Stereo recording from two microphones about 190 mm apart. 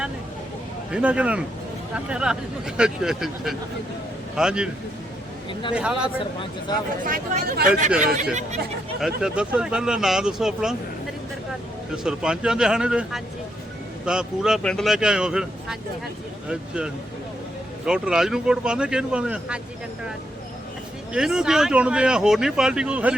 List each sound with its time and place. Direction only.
0.9 s speech: 5° right (ahead or behind)
5.7 s speech: 5° right (ahead or behind)
6.7 s speech: 20° left (ahead or behind)
7.0 s speech: 50° right (ahead or behind)
9.0 s speech: 5° right (ahead or behind)
12.0 s speech: 5° right (ahead or behind)
21.1 s speech: 5° right (ahead or behind)